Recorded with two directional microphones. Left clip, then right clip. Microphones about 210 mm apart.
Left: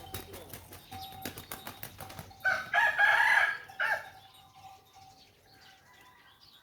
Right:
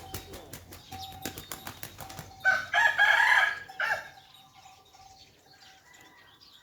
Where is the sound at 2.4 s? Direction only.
15° right (ahead or behind).